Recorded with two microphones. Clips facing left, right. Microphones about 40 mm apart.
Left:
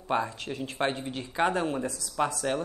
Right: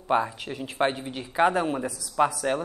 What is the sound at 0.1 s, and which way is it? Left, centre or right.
Speech, centre.